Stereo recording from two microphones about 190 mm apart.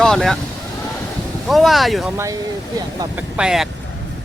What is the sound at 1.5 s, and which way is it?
Speech, centre (ahead or behind).